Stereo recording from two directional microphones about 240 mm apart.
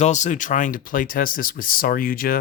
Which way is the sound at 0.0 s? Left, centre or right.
Left.